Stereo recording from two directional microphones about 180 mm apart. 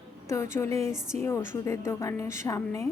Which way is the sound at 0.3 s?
15° left (ahead or behind).